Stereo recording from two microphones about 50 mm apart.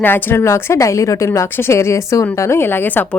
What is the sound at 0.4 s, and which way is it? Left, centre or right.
A woman's voice, left.